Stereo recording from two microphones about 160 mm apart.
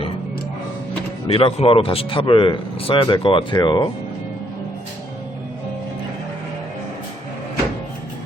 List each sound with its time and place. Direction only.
1.3 s speech: 35° left (ahead or behind)